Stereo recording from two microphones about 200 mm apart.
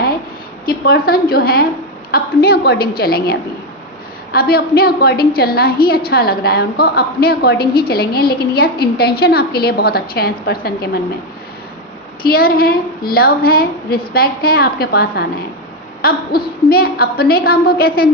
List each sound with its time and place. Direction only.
0.6 s a woman's voice: 50° left (ahead or behind)
12.2 s a woman's voice: 50° left (ahead or behind)